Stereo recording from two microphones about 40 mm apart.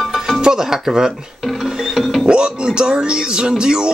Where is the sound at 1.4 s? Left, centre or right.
Centre.